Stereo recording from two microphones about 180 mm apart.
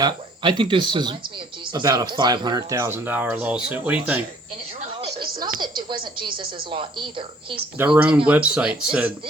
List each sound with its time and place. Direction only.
0.0 s speech: 25° right (ahead or behind); by 4.2 s 10° right (ahead or behind)
5.1 s television: 55° right (ahead or behind)
5.5 s a woman's voice: 25° right (ahead or behind)
7.8 s speech: 10° right (ahead or behind)